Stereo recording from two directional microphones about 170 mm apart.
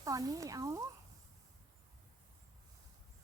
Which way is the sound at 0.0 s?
20° right (ahead or behind).